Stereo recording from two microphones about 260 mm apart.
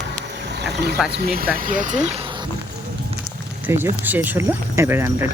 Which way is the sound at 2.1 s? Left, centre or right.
Right.